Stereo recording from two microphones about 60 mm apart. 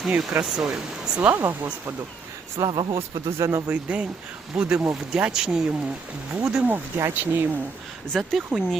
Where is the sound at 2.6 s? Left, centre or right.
Right.